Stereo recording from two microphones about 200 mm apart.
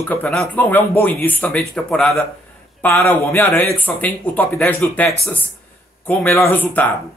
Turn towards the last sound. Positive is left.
turn(degrees=10)  # may be behind; listen again after turning